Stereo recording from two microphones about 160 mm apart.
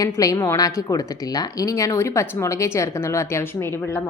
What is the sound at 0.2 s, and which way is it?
A woman's voice, 20° left (ahead or behind).